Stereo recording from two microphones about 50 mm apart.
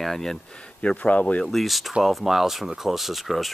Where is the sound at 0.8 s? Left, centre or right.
Left.